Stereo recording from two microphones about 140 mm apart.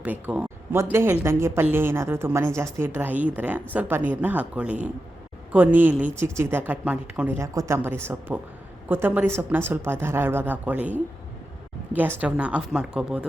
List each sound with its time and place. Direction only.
0.0 s a woman's voice: 10° right (ahead or behind)